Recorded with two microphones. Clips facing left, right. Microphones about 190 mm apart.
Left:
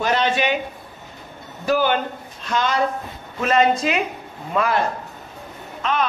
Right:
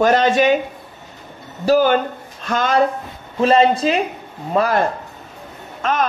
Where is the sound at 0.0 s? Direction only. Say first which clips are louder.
Right 6 dB; 45° right (ahead or behind).